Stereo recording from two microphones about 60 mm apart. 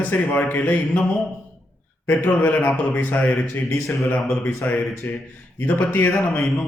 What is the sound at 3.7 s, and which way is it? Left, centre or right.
Speech, left.